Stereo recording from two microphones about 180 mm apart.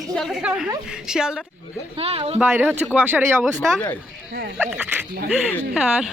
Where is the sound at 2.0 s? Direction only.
35° right (ahead or behind).